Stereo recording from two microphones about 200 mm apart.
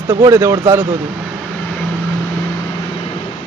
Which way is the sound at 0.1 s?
15° right (ahead or behind).